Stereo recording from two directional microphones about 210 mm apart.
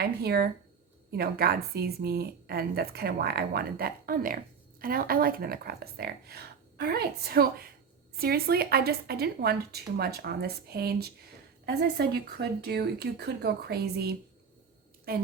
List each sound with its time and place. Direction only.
0.0 s a woman's voice: 50° right (ahead or behind)